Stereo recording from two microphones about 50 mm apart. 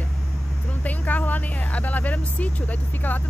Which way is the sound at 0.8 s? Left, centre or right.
Left.